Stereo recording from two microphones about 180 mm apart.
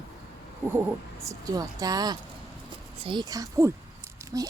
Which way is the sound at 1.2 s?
20° right (ahead or behind).